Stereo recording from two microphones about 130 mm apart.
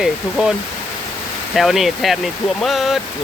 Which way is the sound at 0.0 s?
5° right (ahead or behind).